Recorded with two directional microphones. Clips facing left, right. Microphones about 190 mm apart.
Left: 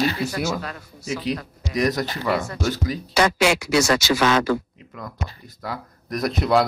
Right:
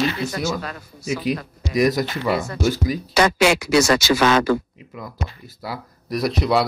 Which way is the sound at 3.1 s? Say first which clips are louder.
Right 2 dB; 70° right (ahead or behind).